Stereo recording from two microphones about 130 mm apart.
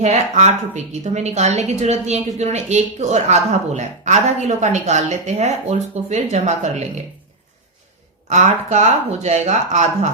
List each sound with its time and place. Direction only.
0.0 s a woman's voice: 60° right (ahead or behind)
8.3 s a woman's voice: 60° right (ahead or behind)